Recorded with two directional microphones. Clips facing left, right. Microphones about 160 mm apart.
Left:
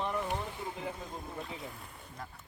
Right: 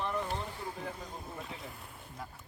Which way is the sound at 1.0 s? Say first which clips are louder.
Left 2 dB; centre (ahead or behind).